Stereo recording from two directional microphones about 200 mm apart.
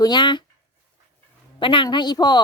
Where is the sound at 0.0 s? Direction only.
20° left (ahead or behind).